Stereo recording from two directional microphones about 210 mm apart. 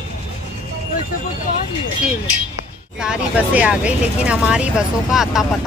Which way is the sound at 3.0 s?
5° right (ahead or behind).